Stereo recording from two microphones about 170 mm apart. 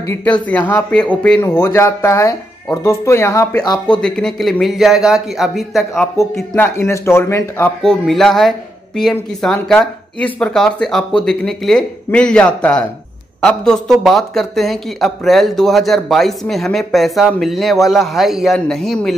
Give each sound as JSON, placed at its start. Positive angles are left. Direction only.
{"t": 0.0, "sound": "speech", "side_deg": 10}
{"t": 4.0, "sound": "speech", "side_deg": 5}
{"t": 6.3, "sound": "speech", "side_deg": 10}
{"t": 7.8, "sound": "speech", "side_deg": 0}